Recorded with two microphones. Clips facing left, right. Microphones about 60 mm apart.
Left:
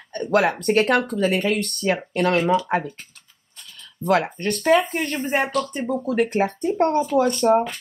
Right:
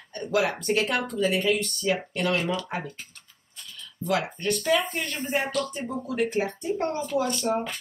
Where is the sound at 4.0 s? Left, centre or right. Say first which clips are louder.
Left 6 dB; left.